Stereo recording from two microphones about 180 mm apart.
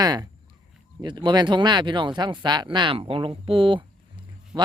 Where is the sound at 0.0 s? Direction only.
20° right (ahead or behind).